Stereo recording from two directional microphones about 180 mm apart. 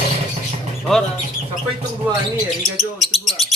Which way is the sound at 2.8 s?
Centre (ahead or behind).